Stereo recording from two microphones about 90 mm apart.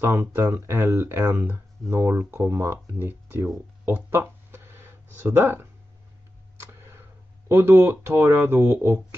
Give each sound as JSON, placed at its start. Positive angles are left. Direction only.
{"t": 0.0, "sound": "speech", "side_deg": -30}
{"t": 6.6, "sound": "tick-tock", "side_deg": -30}
{"t": 7.4, "sound": "speech", "side_deg": -30}